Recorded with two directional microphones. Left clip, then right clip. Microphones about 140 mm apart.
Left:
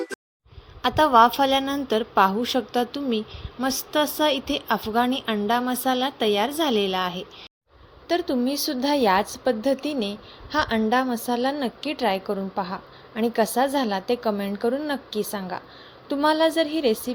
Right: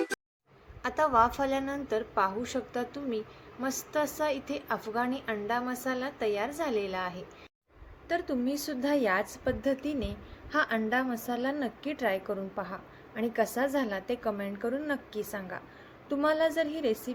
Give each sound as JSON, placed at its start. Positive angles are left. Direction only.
{"t": 0.8, "sound": "a woman's voice", "side_deg": 65}
{"t": 8.0, "sound": "a woman's voice", "side_deg": 45}